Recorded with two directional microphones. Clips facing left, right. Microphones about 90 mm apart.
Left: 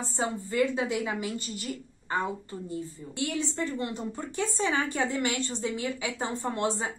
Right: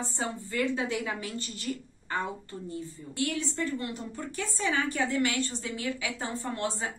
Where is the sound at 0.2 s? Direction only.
20° left (ahead or behind).